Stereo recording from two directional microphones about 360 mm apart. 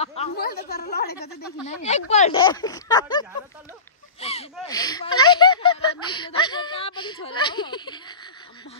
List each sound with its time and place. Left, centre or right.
0.0 s a woman's voice: centre